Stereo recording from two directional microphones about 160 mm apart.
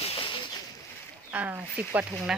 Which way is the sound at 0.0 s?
35° left (ahead or behind).